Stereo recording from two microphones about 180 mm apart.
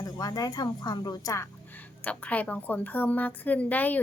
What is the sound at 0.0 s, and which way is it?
A woman's voice, 20° left (ahead or behind).